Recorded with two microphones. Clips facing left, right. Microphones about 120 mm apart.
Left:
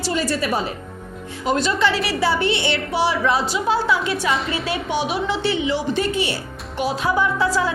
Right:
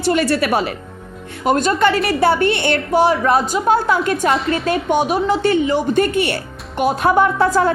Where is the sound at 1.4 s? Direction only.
50° right (ahead or behind).